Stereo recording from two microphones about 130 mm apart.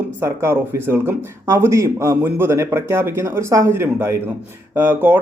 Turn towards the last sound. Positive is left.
turn(degrees=-15)  # may be behind; listen again after turning